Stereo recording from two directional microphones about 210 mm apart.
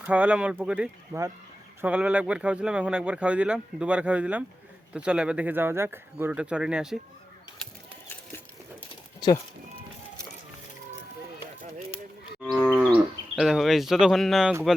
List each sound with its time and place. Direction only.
0.0 s speech: 5° right (ahead or behind)
9.2 s speech: 20° left (ahead or behind)
12.4 s moo: centre (ahead or behind)
13.3 s speech: centre (ahead or behind)